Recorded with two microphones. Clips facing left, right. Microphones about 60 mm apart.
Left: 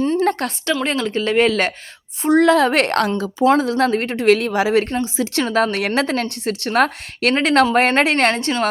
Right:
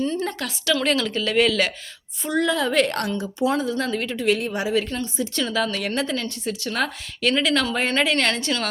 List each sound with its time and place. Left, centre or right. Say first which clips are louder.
0.3 s a sound: left 9 dB; left
0.7 s speech: left 1 dB; left
2.2 s a woman's voice: left 9 dB; left
3.1 s a woman's voice: left 7 dB; left
4.3 s a woman's voice: left 7 dB; left
5.1 s speech: left 5 dB; left
5.4 s a woman's voice: left 6 dB; left
5.7 s a woman's voice: left 6 dB; left
6.7 s a woman's voice: left 10 dB; left